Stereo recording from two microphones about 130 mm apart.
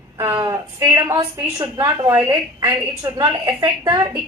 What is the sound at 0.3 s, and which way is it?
A woman's voice, 25° right (ahead or behind).